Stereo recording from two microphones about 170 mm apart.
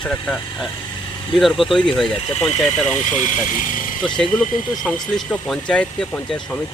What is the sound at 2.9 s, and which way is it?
Speech, 45° left (ahead or behind).